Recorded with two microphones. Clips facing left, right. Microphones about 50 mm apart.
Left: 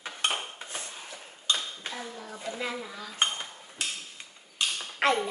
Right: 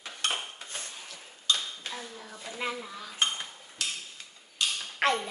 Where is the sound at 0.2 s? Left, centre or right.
Left.